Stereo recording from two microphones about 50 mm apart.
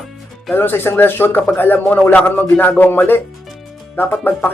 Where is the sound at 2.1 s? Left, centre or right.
Left.